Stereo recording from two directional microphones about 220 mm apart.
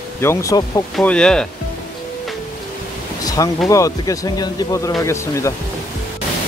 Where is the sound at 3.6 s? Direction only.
15° left (ahead or behind).